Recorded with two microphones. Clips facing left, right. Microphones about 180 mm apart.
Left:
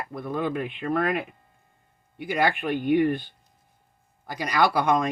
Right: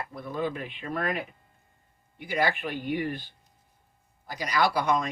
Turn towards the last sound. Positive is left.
turn(degrees=55)  # may be behind; listen again after turning